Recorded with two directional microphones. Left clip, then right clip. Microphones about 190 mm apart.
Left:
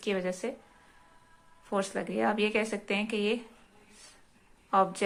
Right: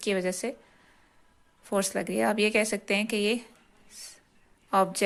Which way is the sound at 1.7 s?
40° right (ahead or behind).